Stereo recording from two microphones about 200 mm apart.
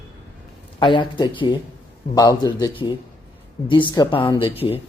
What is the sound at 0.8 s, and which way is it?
A man's voice, 25° left (ahead or behind).